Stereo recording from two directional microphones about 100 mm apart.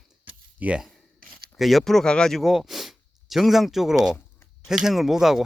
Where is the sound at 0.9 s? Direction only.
Centre (ahead or behind).